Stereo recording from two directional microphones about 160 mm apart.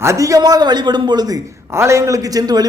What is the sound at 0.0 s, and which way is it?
A man's voice, 20° right (ahead or behind).